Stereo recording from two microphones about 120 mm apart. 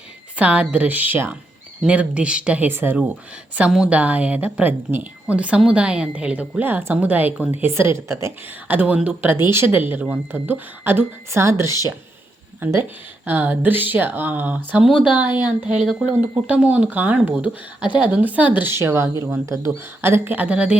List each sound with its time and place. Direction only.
0.3 s speech: 10° right (ahead or behind)